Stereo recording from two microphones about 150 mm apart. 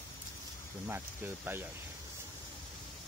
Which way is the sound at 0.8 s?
15° right (ahead or behind).